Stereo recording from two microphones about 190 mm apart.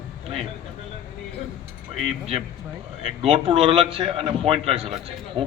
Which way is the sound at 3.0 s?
30° right (ahead or behind).